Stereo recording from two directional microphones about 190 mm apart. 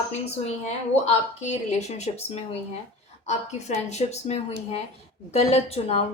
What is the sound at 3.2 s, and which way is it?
Speech, 35° left (ahead or behind).